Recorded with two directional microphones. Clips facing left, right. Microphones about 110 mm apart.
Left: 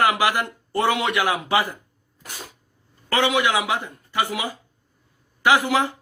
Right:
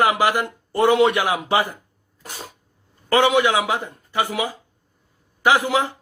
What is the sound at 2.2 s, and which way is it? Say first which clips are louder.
Cough: right 2 dB; 25° right (ahead or behind).